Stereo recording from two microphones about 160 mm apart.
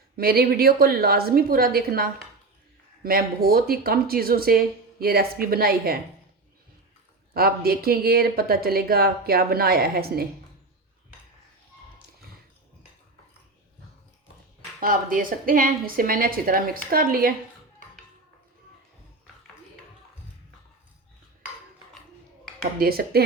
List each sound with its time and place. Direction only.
0.2 s speech: 70° right (ahead or behind)
7.3 s speech: 70° right (ahead or behind)
14.8 s a woman's voice: 60° right (ahead or behind)
22.8 s speech: 70° right (ahead or behind)